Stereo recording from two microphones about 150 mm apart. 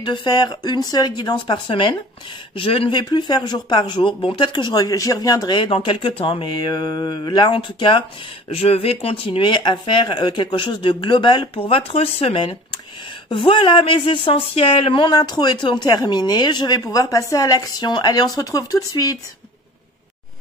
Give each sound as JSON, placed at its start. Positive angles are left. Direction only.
{"t": 0.0, "sound": "speech", "side_deg": 30}